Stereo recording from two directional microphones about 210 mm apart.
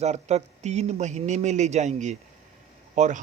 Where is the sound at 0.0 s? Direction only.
30° right (ahead or behind).